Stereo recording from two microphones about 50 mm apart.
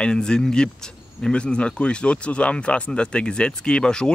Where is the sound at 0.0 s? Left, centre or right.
Centre.